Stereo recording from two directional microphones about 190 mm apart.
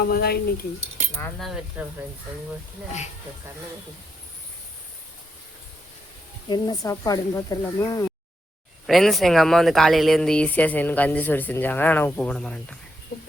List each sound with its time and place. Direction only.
0.0 s speech: 55° left (ahead or behind)
1.0 s cutlery: 35° right (ahead or behind)
1.4 s speech: centre (ahead or behind)
6.5 s speech: 20° left (ahead or behind)
8.9 s speech: centre (ahead or behind)